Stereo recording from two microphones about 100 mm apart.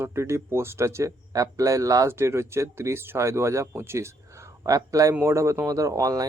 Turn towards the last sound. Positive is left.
turn(degrees=-35)  # may be behind; listen again after turning